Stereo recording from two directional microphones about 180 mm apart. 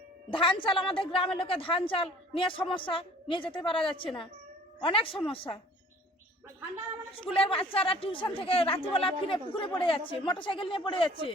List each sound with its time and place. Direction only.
0.3 s a woman's voice: 30° left (ahead or behind)
7.1 s speech: 30° left (ahead or behind)